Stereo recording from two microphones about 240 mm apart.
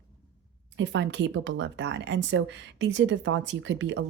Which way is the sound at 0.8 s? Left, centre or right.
Right.